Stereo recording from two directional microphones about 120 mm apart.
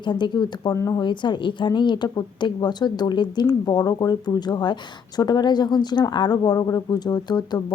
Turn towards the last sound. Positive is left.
turn(degrees=35)  # may be behind; listen again after turning